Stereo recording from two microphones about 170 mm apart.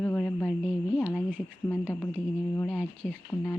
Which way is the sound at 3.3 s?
15° left (ahead or behind).